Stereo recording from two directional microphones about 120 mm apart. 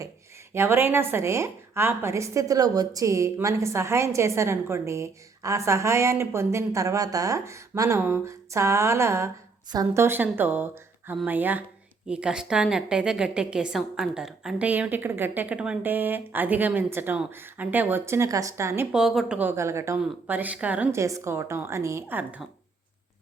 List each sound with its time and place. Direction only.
0.5 s a woman's voice: 20° right (ahead or behind); by 14.7 s 5° right (ahead or behind)
14.7 s a woman's voice: 15° right (ahead or behind)
18.9 s a woman's voice: 5° right (ahead or behind)
19.4 s a woman's voice: 20° right (ahead or behind)